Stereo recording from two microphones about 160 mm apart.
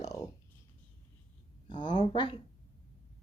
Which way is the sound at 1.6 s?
30° left (ahead or behind).